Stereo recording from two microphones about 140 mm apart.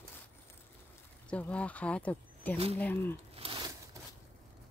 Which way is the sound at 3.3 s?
40° right (ahead or behind).